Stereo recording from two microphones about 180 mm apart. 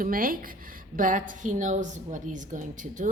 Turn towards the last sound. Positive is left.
turn(degrees=-45)  # may be behind; listen again after turning